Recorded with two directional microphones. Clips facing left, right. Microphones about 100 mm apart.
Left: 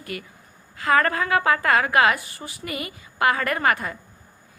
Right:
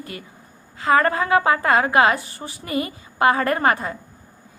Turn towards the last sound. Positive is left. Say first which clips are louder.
# right 3 dB
turn(degrees=-25)  # may be behind; listen again after turning